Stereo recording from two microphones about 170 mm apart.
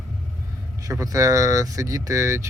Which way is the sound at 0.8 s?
20° right (ahead or behind).